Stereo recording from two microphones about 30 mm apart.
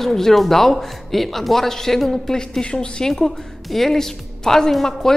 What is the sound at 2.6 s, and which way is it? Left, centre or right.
Speech, left.